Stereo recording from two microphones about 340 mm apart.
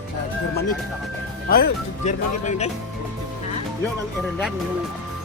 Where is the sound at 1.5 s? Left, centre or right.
Left.